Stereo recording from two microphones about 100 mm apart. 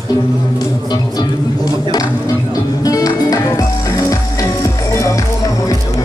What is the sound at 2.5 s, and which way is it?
Music, 35° left (ahead or behind).